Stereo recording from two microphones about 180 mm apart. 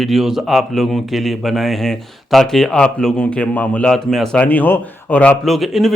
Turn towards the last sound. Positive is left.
turn(degrees=0)  # may be behind; listen again after turning